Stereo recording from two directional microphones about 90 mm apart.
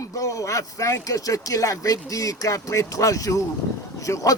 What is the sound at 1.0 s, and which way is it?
A man's voice, 40° left (ahead or behind).